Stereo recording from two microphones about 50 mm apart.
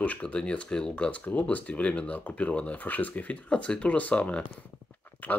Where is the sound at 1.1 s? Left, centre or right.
Left.